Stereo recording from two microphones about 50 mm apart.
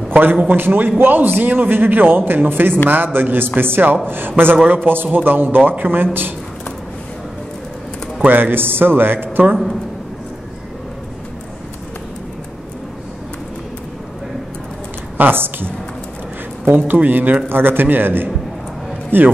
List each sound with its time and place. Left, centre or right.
0.1 s a man's voice: right
8.2 s a man's voice: right
15.1 s a man's voice: right